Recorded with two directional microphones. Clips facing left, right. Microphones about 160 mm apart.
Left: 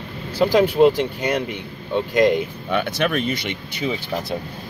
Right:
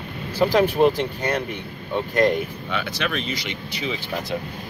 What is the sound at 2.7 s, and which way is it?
Speech, 50° left (ahead or behind).